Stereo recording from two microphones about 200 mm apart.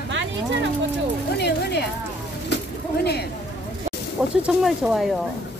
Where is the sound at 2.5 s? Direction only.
60° left (ahead or behind).